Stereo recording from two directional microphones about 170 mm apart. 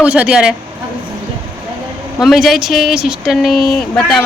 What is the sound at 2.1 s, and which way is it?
A woman's voice, centre (ahead or behind).